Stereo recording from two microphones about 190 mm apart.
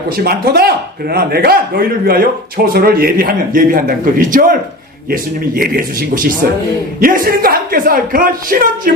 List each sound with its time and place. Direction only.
0.3 s speech: 55° right (ahead or behind)